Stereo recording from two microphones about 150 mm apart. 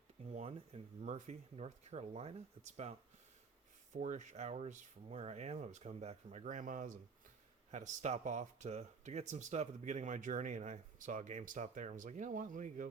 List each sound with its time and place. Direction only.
0.3 s speech: 50° right (ahead or behind)
3.9 s speech: 55° right (ahead or behind)